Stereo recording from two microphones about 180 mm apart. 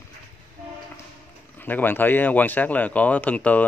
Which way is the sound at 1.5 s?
10° left (ahead or behind).